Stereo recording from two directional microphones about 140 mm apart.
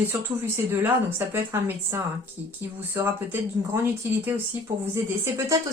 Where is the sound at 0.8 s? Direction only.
15° right (ahead or behind).